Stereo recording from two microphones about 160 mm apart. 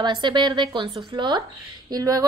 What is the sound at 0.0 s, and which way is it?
A woman's voice, 30° right (ahead or behind).